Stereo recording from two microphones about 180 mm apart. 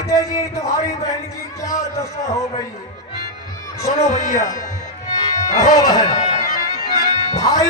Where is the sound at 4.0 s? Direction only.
40° left (ahead or behind).